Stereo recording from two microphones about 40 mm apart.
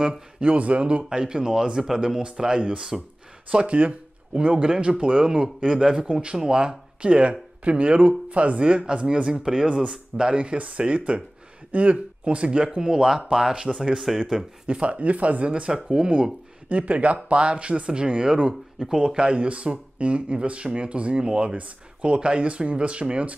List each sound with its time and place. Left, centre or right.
0.4 s speech: right
1.0 s speech: right
14.7 s speech: right
16.6 s speech: right; by 19.2 s centre
19.2 s speech: right
21.2 s speech: right
21.5 s speech: right